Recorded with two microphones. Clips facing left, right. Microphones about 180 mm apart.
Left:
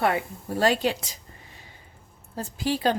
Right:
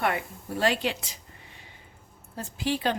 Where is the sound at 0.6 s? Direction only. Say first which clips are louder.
Left 4 dB; 40° left (ahead or behind).